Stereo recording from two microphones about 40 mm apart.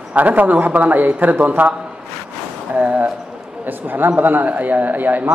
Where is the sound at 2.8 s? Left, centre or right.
Right.